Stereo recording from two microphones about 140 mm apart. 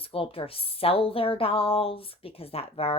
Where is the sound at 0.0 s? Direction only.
40° left (ahead or behind).